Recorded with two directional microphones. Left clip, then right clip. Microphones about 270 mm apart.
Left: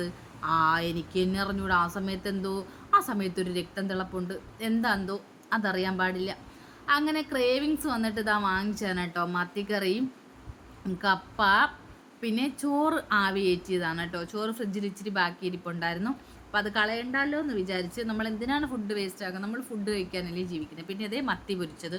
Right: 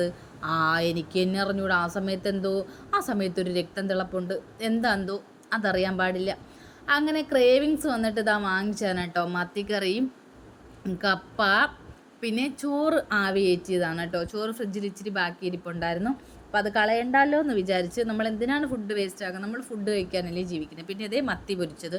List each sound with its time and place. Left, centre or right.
0.0 s speech: centre